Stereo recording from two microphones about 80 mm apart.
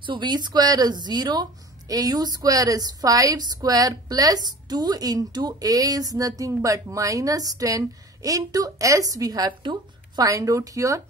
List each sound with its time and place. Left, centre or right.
0.0 s a woman's voice: right